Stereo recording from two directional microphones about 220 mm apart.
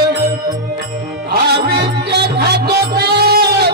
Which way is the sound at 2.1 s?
50° right (ahead or behind).